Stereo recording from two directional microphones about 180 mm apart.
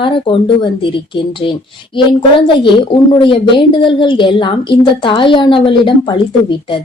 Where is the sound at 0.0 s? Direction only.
30° left (ahead or behind).